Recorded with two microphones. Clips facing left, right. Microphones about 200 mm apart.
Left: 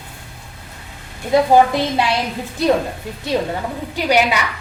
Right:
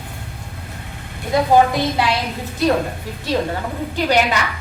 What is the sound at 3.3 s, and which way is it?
Speech, 15° left (ahead or behind).